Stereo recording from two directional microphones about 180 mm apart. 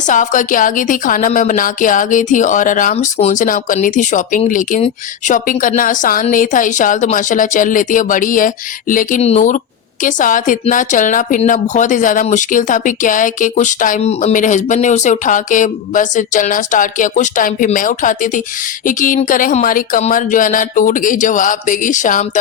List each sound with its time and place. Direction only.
0.1 s a woman's voice: 45° left (ahead or behind)